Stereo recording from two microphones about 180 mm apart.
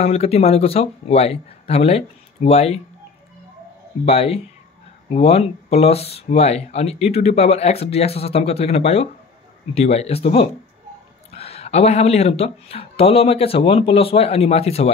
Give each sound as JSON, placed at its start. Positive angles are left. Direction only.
{"t": 0.0, "sound": "speech", "side_deg": 35}
{"t": 4.0, "sound": "speech", "side_deg": 35}